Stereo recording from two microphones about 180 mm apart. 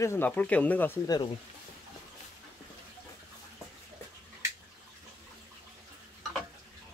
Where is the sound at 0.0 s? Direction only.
10° left (ahead or behind).